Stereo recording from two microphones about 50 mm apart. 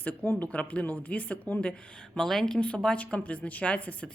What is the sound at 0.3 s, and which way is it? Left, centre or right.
A woman's voice, left.